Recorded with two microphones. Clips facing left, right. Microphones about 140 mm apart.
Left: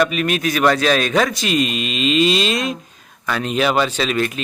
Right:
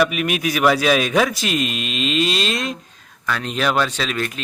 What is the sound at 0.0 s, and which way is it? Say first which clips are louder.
Speech: left 1 dB; 5° right (ahead or behind).